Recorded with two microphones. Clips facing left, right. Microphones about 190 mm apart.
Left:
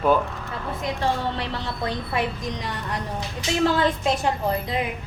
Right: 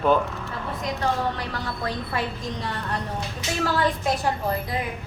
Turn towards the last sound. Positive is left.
turn(degrees=25)  # may be behind; listen again after turning